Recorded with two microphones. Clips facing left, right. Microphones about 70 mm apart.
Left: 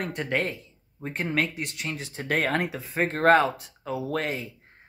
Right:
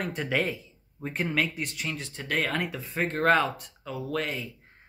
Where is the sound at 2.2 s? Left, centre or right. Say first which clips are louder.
Left 4 dB; left.